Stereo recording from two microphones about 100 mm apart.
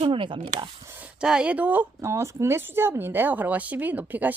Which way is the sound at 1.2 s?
10° right (ahead or behind).